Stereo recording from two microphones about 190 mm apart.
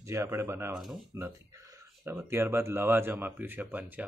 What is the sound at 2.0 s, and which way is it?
Speech, 15° right (ahead or behind).